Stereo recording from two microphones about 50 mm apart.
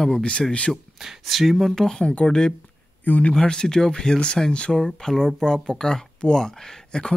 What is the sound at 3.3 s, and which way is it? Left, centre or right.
Speech, centre.